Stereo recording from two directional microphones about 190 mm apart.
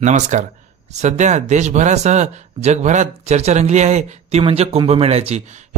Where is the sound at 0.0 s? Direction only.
40° right (ahead or behind).